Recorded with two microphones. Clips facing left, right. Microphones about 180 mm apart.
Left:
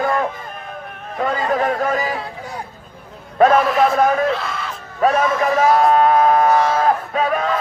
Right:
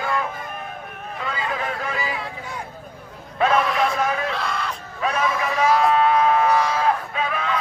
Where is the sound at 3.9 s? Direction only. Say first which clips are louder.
Left 8 dB; 45° left (ahead or behind).